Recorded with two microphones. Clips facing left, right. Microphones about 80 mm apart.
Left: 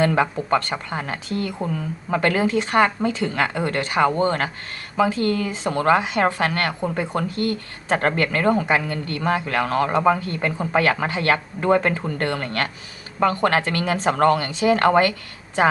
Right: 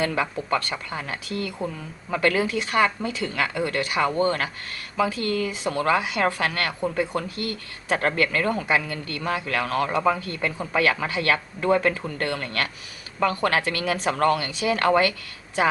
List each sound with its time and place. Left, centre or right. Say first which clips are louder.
0.2 s a woman's voice: left 5 dB; left